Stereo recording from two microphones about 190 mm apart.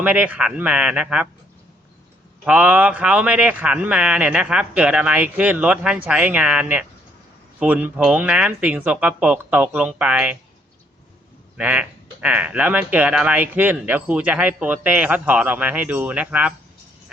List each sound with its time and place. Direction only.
0.0 s speech: 10° right (ahead or behind)
2.4 s speech: 10° right (ahead or behind)
11.5 s speech: 5° right (ahead or behind)